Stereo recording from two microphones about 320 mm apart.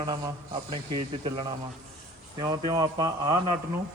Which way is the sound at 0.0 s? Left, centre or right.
Centre.